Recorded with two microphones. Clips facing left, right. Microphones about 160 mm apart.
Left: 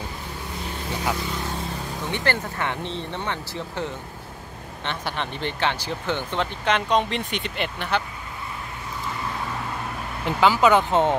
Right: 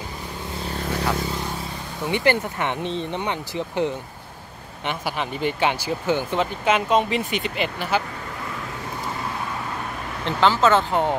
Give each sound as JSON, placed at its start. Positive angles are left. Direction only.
{"t": 2.0, "sound": "speech", "side_deg": -15}
{"t": 10.2, "sound": "speech", "side_deg": 10}